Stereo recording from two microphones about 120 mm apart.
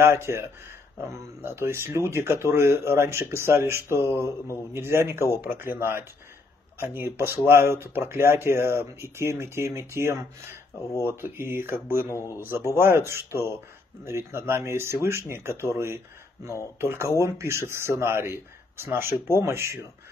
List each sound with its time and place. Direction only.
0.0 s speech: 20° right (ahead or behind)
12.1 s speech: 25° left (ahead or behind)
12.4 s speech: 20° right (ahead or behind)